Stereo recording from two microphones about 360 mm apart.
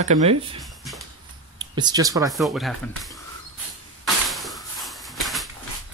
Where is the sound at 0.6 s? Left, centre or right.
Centre.